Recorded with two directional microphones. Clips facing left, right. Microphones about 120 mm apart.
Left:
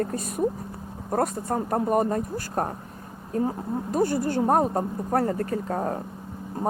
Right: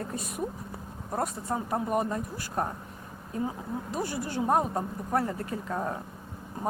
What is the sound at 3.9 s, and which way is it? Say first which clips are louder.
Speech: left 9 dB; 50° left (ahead or behind).